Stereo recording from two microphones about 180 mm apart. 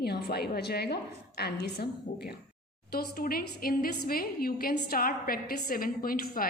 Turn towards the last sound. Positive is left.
turn(degrees=55)  # may be behind; listen again after turning